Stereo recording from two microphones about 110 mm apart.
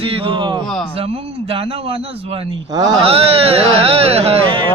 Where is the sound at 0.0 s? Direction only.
60° right (ahead or behind).